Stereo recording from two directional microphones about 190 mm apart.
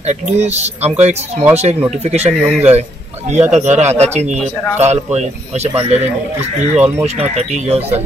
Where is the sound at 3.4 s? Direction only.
40° right (ahead or behind).